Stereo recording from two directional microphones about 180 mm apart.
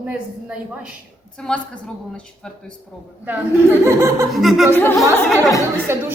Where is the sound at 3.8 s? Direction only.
15° right (ahead or behind).